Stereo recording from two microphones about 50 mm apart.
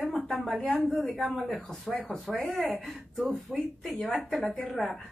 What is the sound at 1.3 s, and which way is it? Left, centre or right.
A woman's voice, centre.